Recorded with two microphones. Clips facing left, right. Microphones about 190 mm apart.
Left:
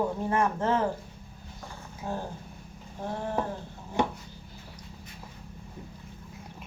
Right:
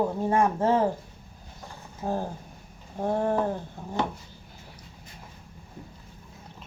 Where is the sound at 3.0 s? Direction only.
50° right (ahead or behind).